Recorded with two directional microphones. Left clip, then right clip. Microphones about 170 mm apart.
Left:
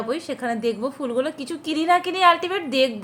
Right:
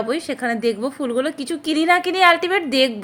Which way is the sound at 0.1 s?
40° right (ahead or behind).